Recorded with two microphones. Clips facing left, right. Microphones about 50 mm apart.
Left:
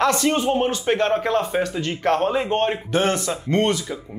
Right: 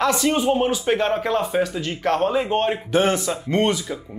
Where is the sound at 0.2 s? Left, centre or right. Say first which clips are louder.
Even; centre.